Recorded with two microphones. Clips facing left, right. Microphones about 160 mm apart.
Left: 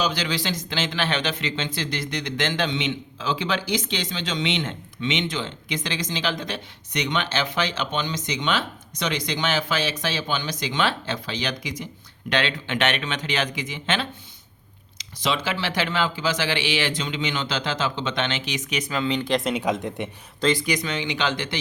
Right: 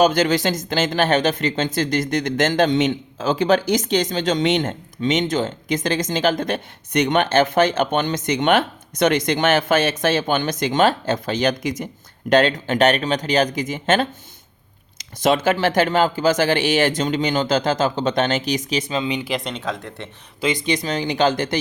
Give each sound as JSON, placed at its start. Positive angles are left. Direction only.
{"t": 0.0, "sound": "speech", "side_deg": -50}
{"t": 19.6, "sound": "speech", "side_deg": 15}
{"t": 20.4, "sound": "speech", "side_deg": -20}